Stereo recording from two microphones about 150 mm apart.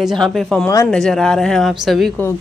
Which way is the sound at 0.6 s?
15° left (ahead or behind).